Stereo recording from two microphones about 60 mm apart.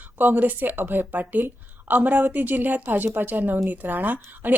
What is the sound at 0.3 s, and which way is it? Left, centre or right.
Speech, right.